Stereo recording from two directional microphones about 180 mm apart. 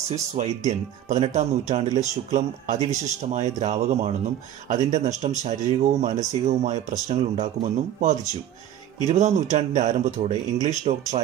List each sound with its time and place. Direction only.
0.1 s speech: 35° right (ahead or behind)